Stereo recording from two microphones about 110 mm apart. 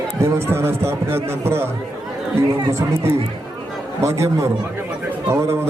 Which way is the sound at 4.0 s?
25° right (ahead or behind).